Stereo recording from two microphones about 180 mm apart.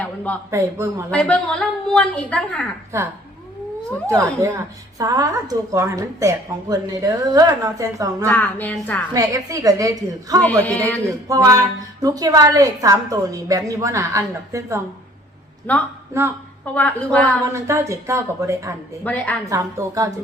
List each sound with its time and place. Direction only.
0.5 s a woman's voice: 15° right (ahead or behind)
1.1 s a woman's voice: 5° left (ahead or behind)
4.4 s a woman's voice: 15° right (ahead or behind)
8.3 s a woman's voice: 10° left (ahead or behind)
9.1 s a woman's voice: 20° right (ahead or behind)
10.6 s a woman's voice: 10° left (ahead or behind)
11.3 s a woman's voice: 20° right (ahead or behind)
15.7 s a woman's voice: 10° left (ahead or behind)
16.1 s a woman's voice: 15° right (ahead or behind)
16.7 s a woman's voice: 10° left (ahead or behind)
17.4 s a woman's voice: 15° right (ahead or behind)
19.0 s a woman's voice: 10° left (ahead or behind)
19.5 s a woman's voice: 20° right (ahead or behind)